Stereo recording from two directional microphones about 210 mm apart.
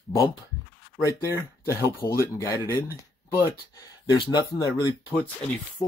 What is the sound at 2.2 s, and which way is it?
Speech, 15° left (ahead or behind).